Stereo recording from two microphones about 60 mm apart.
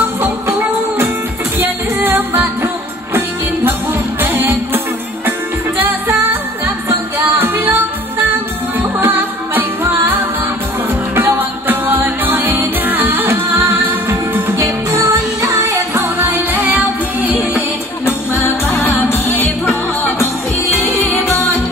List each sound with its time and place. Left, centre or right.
0.5 s music: right
1.6 s music: right
4.2 s music: right
7.3 s music: right
11.1 s music: right
14.6 s music: right
16.0 s music: right
18.0 s music: left
19.3 s music: left